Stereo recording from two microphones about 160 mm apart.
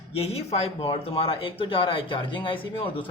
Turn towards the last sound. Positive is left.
turn(degrees=35)  # may be behind; listen again after turning